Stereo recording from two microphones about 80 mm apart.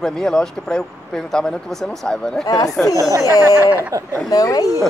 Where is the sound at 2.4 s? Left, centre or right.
Left.